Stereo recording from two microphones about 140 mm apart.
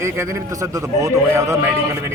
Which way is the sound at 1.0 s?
20° right (ahead or behind).